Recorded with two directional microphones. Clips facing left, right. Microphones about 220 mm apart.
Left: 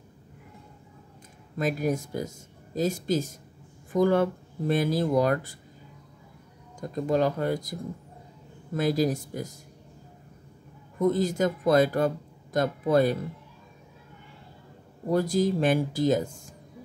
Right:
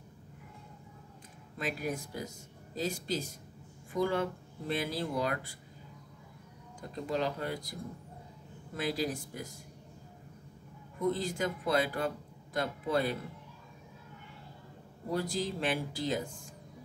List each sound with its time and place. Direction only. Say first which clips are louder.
1.6 s speech: left 9 dB; 45° left (ahead or behind)
6.8 s speech: left 9 dB; 45° left (ahead or behind)
8.7 s speech: left 9 dB; 45° left (ahead or behind)
11.0 s speech: left 8 dB; 45° left (ahead or behind)
15.0 s speech: left 10 dB; 45° left (ahead or behind)